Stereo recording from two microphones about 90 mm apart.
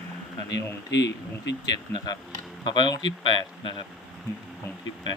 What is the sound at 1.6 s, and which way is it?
Speech, 50° left (ahead or behind).